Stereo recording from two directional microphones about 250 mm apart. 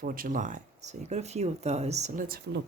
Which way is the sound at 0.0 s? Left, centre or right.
Right.